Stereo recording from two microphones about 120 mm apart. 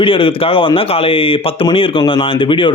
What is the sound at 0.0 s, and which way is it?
Speech, 45° left (ahead or behind).